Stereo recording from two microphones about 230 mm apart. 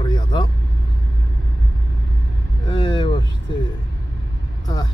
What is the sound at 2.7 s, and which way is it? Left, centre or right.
Speech, centre.